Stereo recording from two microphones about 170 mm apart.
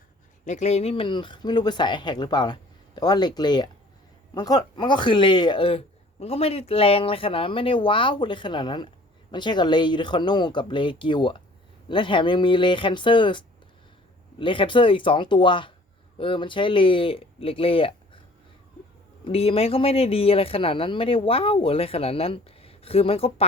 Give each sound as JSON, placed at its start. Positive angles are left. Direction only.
{"t": 0.4, "sound": "speech", "side_deg": 45}
{"t": 19.2, "sound": "speech", "side_deg": 35}